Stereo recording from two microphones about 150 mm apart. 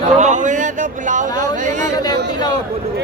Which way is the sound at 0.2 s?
55° right (ahead or behind).